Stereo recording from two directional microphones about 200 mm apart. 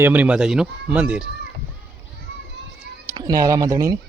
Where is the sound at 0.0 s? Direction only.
10° right (ahead or behind).